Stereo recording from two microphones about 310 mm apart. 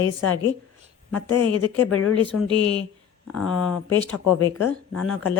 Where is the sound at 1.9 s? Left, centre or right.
Left.